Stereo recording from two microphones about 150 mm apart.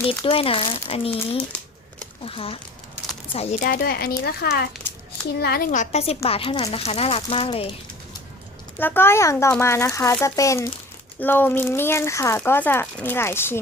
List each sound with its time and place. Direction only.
0.1 s speech: 40° left (ahead or behind)
3.6 s a woman's voice: 70° left (ahead or behind); by 5.6 s 90° left
5.7 s a woman's voice: 50° left (ahead or behind)
8.8 s speech: 15° left (ahead or behind)